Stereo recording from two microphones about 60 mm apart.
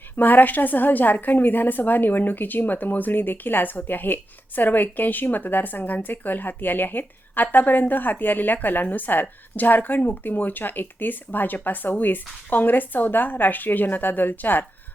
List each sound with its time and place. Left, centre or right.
0.2 s a woman's voice: left